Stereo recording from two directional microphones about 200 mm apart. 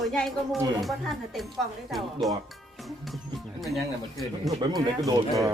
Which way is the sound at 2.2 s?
Centre (ahead or behind).